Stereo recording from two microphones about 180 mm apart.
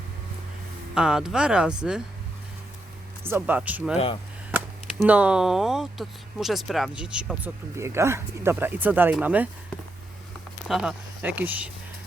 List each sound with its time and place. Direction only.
0.9 s speech: 5° right (ahead or behind)
3.2 s speech: 10° right (ahead or behind)
3.9 s speech: 30° left (ahead or behind)
5.0 s speech: 5° right (ahead or behind)
10.7 s speech: 5° right (ahead or behind)